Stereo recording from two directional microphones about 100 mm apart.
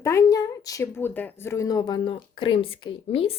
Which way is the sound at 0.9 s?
20° left (ahead or behind).